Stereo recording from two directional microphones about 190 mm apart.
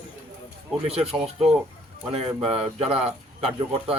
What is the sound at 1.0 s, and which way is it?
Speech, 30° right (ahead or behind).